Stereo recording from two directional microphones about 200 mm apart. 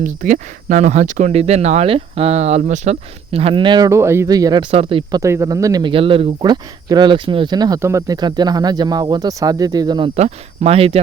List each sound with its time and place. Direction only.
0.0 s speech: 40° right (ahead or behind)
5.2 s speech: 15° right (ahead or behind)
10.2 s speech: 35° right (ahead or behind)